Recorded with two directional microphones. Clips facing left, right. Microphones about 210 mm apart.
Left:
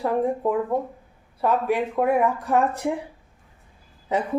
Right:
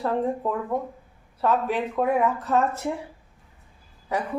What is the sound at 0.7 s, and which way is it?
Speech, 30° left (ahead or behind).